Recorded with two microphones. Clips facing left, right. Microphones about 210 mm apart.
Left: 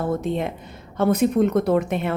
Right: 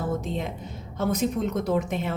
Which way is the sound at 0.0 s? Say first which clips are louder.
Left 5 dB; 60° left (ahead or behind).